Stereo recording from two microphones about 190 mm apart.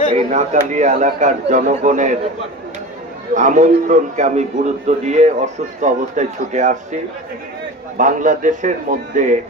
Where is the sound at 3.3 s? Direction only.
40° right (ahead or behind).